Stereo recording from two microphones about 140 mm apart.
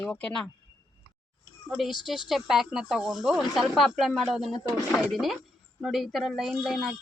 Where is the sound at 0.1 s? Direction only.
5° left (ahead or behind).